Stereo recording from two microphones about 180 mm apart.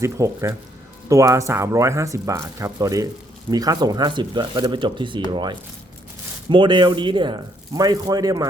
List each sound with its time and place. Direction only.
0.0 s speech: 15° right (ahead or behind)